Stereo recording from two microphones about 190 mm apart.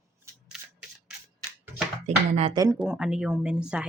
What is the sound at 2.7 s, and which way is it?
Speech, 5° right (ahead or behind).